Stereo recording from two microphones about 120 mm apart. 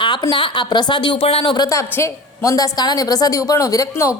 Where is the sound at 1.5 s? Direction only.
30° left (ahead or behind).